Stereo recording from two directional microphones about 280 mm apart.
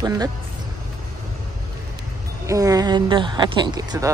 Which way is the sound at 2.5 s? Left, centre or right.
Centre.